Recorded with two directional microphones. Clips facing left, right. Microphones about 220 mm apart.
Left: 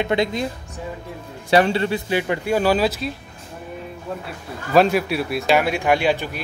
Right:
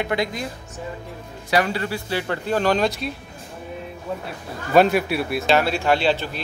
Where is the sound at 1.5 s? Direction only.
25° left (ahead or behind); by 3.1 s 5° left (ahead or behind).